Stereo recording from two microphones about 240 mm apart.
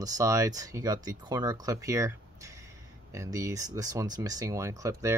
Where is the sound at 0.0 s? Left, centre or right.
Centre.